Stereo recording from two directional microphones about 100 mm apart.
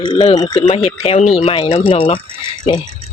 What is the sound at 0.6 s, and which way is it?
Speech, 85° left.